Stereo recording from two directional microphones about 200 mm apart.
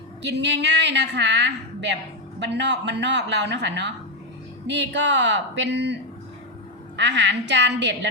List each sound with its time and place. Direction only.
0.2 s a woman's voice: 60° right (ahead or behind)